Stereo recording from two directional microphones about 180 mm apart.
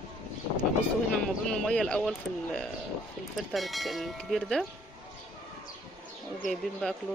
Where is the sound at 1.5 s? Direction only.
5° left (ahead or behind).